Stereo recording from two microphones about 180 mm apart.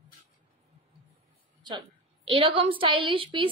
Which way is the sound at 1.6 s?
25° right (ahead or behind).